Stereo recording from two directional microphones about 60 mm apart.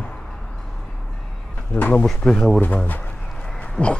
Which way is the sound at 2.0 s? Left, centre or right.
Centre.